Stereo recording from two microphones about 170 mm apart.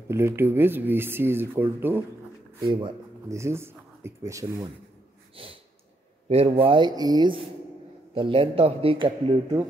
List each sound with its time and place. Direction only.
0.1 s speech: 15° right (ahead or behind)
2.6 s a man's voice: 30° right (ahead or behind)
3.3 s a man's voice: 15° right (ahead or behind)
6.2 s a man's voice: 35° right (ahead or behind)